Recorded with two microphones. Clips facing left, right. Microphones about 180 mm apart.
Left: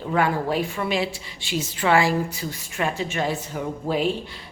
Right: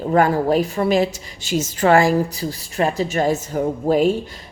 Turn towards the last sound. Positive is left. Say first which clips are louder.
# right 7 dB
turn(degrees=-45)  # may be behind; listen again after turning